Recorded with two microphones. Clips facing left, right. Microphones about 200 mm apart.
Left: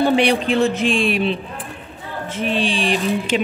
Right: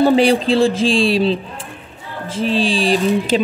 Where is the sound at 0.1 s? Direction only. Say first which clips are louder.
Right 3 dB; 30° right (ahead or behind).